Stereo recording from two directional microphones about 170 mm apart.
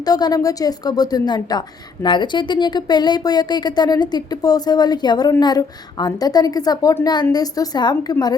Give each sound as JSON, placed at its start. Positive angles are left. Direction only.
{"t": 0.0, "sound": "a woman's voice", "side_deg": 20}